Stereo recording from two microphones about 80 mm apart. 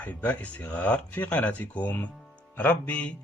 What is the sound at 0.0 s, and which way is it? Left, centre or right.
Speech, left.